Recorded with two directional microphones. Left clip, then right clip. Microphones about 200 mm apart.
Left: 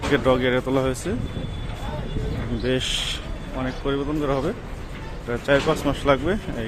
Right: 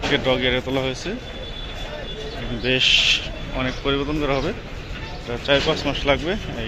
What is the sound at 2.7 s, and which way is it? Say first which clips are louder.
Speech: right 9 dB; 20° left (ahead or behind).